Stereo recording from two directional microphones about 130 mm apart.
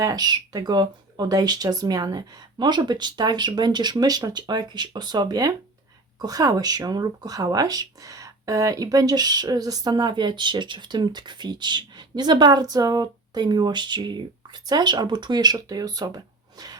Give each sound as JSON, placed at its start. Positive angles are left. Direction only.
{"t": 0.0, "sound": "speech", "side_deg": -30}